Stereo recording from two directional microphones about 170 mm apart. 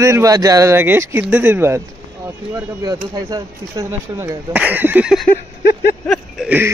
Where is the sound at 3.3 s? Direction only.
20° right (ahead or behind); by 5.3 s 5° right (ahead or behind).